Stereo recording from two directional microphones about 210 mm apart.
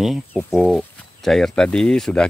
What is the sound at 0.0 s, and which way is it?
Speech, centre (ahead or behind).